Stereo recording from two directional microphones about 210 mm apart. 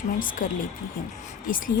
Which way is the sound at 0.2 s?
40° left (ahead or behind).